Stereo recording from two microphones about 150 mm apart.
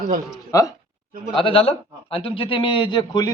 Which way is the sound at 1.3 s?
35° left (ahead or behind).